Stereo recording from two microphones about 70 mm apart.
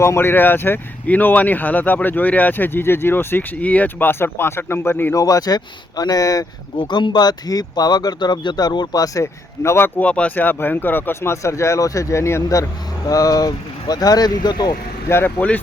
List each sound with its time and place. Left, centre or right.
0.0 s speech: left
5.1 s speech: left
6.9 s speech: left
9.2 s speech: left
10.0 s speech: centre; by 12.6 s left
13.1 s speech: left
15.1 s speech: left